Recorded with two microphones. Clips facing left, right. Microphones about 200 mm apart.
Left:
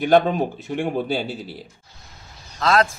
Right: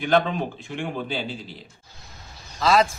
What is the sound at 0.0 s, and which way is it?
Speech, 45° left (ahead or behind).